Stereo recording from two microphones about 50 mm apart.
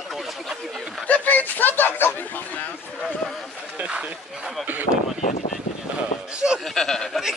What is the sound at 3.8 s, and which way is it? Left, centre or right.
Speech, right.